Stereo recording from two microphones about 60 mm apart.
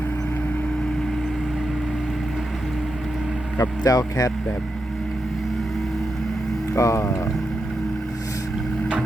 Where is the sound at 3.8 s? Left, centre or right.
Left.